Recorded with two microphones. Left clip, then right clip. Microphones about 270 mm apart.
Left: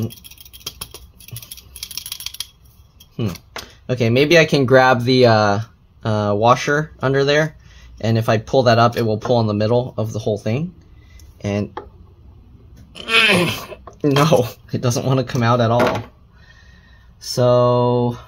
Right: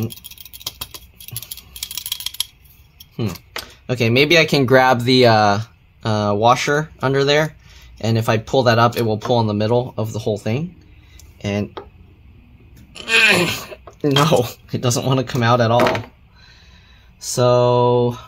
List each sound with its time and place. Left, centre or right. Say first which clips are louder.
1.8 s a sound: right 3 dB; centre
3.8 s speech: right 1 dB; centre
12.9 s speech: right 1 dB; centre
17.4 s speech: even; centre